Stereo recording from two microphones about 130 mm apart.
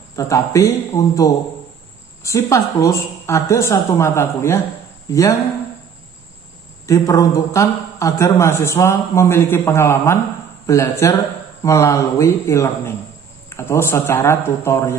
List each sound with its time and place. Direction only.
0.1 s a man's voice: 25° left (ahead or behind)
6.9 s a man's voice: 25° left (ahead or behind)